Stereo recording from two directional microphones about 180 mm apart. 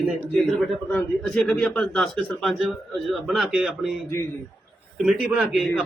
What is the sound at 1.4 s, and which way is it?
A man's voice, 5° left (ahead or behind).